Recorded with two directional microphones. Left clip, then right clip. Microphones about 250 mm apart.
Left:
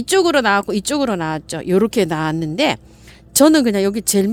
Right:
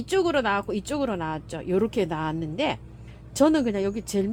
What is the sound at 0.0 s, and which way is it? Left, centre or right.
Speech, left.